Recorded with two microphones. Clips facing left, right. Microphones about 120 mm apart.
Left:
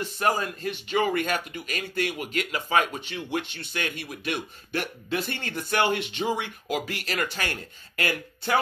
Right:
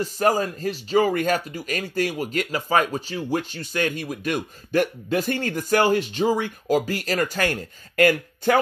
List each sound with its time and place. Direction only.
0.0 s speech: 40° right (ahead or behind)